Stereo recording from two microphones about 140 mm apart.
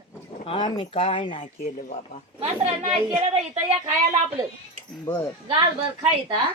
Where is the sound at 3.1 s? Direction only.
25° right (ahead or behind).